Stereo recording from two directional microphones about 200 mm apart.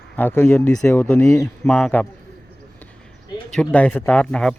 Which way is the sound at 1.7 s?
5° left (ahead or behind).